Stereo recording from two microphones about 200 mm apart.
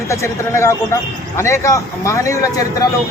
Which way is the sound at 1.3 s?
15° left (ahead or behind).